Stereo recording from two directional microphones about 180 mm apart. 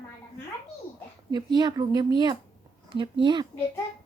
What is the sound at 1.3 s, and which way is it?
Speech, 25° right (ahead or behind).